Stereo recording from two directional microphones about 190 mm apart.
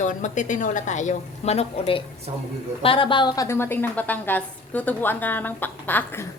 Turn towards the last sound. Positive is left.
turn(degrees=10)  # may be behind; listen again after turning